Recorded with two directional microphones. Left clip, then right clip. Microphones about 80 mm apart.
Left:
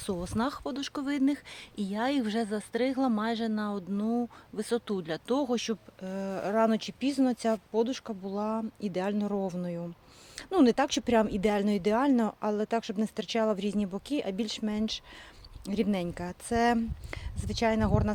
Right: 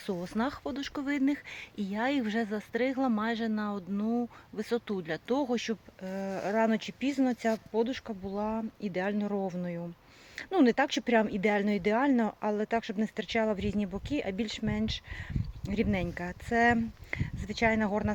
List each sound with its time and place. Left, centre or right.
0.0 s speech: centre
7.7 s speech: left